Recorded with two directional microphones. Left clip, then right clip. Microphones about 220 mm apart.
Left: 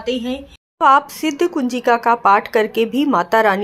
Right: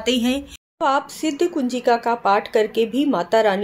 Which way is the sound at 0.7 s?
10° left (ahead or behind).